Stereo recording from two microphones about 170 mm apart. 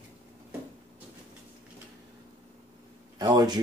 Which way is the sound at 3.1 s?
25° right (ahead or behind).